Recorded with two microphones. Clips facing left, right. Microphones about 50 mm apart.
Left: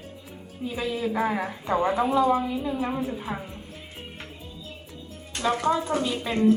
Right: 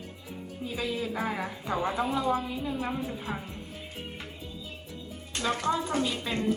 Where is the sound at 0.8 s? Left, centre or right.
Left.